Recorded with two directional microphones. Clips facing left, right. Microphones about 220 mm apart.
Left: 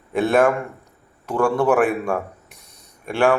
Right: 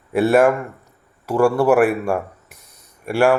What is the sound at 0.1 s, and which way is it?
Speech, 10° right (ahead or behind).